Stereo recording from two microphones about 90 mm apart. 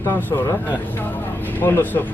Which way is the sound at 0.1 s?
20° left (ahead or behind).